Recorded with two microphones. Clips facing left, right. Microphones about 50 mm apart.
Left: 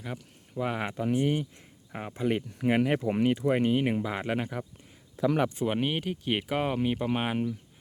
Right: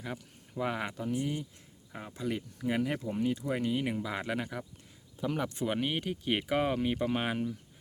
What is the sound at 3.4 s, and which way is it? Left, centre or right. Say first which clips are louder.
Speech: left 6 dB; left.